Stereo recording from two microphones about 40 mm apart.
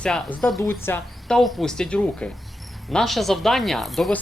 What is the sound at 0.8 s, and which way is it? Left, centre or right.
Speech, left.